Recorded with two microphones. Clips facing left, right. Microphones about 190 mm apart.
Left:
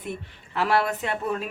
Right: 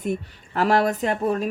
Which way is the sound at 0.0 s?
45° right (ahead or behind).